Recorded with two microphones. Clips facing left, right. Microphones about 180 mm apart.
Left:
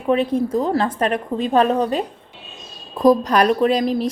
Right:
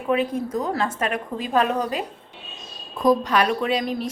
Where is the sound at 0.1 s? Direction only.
30° left (ahead or behind).